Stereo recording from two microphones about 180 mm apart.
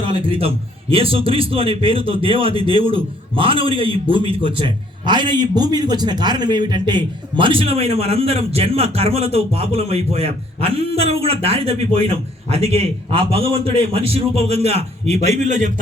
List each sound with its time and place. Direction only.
0.1 s a man's voice: 30° right (ahead or behind)